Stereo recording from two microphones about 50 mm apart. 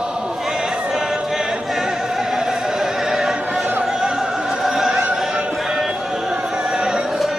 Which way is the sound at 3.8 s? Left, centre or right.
Centre.